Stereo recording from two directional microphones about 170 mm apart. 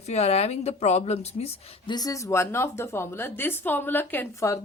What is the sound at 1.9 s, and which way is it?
A woman's voice, 20° left (ahead or behind).